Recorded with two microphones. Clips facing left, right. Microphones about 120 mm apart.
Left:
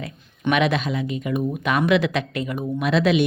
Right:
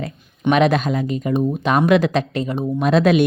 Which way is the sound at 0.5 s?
40° right (ahead or behind).